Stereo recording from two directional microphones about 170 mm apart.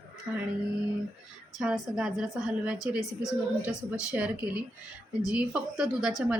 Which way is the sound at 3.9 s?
5° right (ahead or behind).